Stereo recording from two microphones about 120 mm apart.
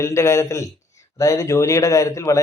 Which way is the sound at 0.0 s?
25° left (ahead or behind).